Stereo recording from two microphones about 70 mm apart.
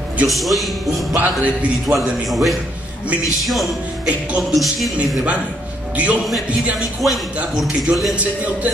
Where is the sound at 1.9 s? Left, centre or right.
Centre.